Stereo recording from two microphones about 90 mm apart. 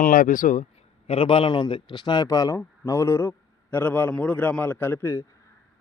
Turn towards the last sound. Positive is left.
turn(degrees=30)  # may be behind; listen again after turning